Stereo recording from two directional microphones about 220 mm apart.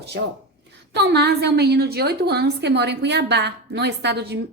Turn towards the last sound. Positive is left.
turn(degrees=-50)  # may be behind; listen again after turning